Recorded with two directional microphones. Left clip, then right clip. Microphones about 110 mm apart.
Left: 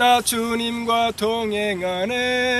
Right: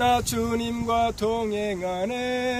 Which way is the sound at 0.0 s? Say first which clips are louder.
Left 5 dB; 15° right (ahead or behind).